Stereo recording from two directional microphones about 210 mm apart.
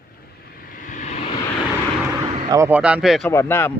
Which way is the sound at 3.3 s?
15° left (ahead or behind).